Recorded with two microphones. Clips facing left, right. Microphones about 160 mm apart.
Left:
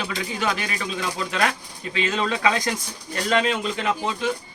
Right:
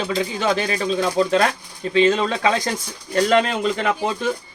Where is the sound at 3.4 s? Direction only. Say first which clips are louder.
Right 3 dB; 50° right (ahead or behind).